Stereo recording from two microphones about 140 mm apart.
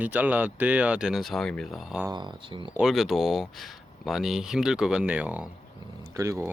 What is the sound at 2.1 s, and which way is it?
Speech, 35° right (ahead or behind).